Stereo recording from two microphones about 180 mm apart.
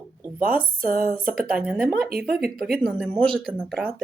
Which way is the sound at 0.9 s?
50° right (ahead or behind).